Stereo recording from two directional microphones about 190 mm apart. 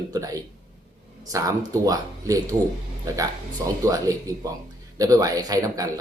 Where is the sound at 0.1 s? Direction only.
20° right (ahead or behind).